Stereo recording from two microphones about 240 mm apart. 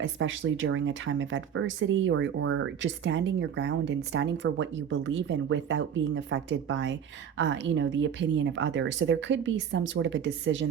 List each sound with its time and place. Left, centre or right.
0.0 s speech: right